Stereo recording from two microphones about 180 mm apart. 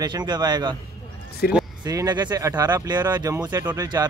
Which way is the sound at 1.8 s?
20° right (ahead or behind).